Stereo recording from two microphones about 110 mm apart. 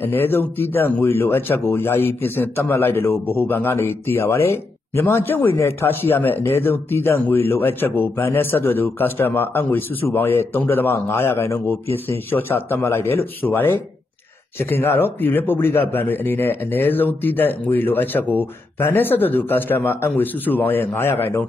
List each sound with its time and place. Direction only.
0.0 s speech: 20° left (ahead or behind)